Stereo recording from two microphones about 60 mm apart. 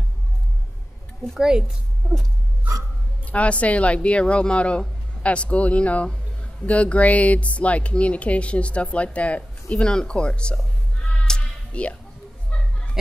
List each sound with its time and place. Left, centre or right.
3.3 s speech: left
11.2 s music: centre
12.4 s a sound: left